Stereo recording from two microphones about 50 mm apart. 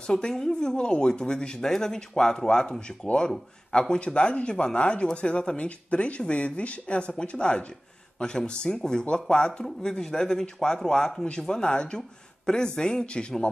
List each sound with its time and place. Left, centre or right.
0.0 s speech: centre